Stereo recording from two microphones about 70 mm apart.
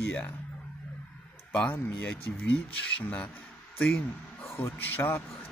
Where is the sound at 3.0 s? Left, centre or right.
Left.